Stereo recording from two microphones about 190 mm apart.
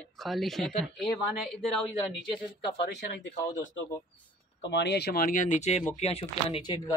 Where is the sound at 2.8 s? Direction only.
65° left (ahead or behind).